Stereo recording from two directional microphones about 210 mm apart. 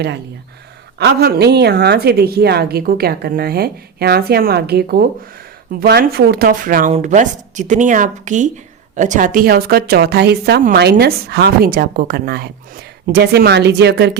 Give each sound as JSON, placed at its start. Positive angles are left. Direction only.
{"t": 0.9, "sound": "a woman's voice", "side_deg": -50}